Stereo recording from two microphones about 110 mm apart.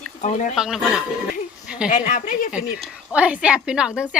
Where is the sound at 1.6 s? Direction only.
5° right (ahead or behind).